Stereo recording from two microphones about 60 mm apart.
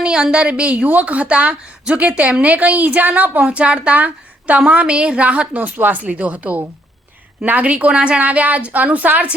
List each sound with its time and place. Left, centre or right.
0.0 s a woman's voice: centre